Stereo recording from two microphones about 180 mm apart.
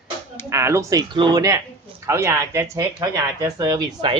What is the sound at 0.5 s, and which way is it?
Speech, 15° right (ahead or behind).